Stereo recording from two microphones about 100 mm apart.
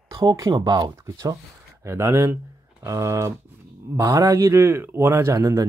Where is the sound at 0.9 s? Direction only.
30° right (ahead or behind).